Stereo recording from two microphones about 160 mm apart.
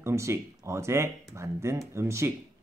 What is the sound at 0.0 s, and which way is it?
Speech, 15° right (ahead or behind).